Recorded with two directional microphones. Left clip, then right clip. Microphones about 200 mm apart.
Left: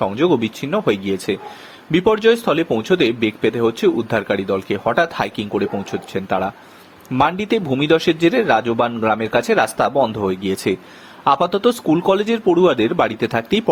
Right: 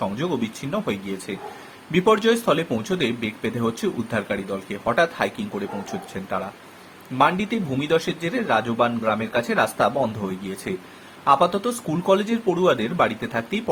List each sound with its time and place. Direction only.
0.0 s a man's voice: 40° left (ahead or behind)